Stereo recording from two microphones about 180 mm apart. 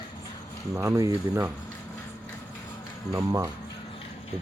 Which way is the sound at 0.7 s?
15° right (ahead or behind).